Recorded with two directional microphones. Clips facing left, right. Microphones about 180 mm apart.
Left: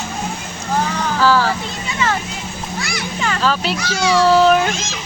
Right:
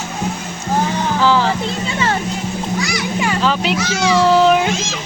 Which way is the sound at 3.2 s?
15° right (ahead or behind).